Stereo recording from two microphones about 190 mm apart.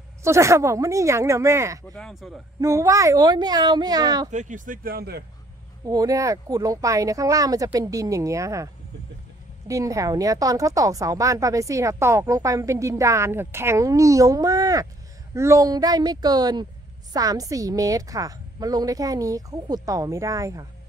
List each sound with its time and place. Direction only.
0.2 s a woman's voice: 15° right (ahead or behind)
2.0 s speech: centre (ahead or behind)
2.6 s speech: 15° right (ahead or behind)
4.3 s speech: 40° right (ahead or behind)
5.9 s a woman's voice: 20° right (ahead or behind)
9.7 s a woman's voice: 15° right (ahead or behind)